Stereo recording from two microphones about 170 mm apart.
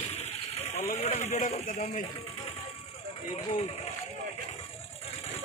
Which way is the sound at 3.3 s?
40° left (ahead or behind).